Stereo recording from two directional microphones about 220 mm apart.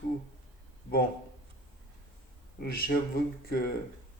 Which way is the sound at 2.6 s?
45° left (ahead or behind).